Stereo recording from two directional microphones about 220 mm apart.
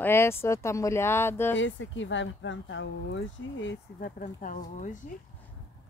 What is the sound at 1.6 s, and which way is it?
Speech, 60° left (ahead or behind).